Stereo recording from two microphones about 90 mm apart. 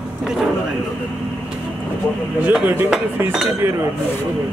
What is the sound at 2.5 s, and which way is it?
Speech, 15° right (ahead or behind).